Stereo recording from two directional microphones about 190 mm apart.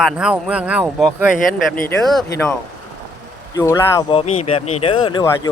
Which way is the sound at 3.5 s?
15° left (ahead or behind).